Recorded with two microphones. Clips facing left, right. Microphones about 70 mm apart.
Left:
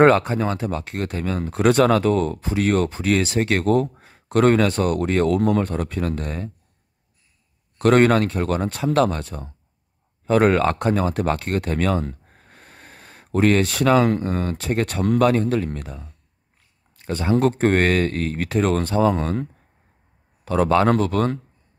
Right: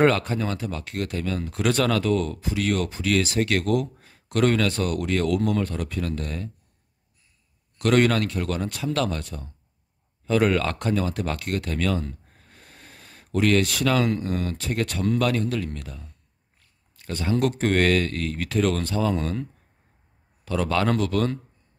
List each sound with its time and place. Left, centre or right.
0.0 s speech: left
7.8 s speech: left
20.4 s speech: left